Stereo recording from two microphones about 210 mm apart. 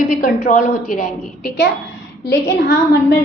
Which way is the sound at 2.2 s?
60° left (ahead or behind).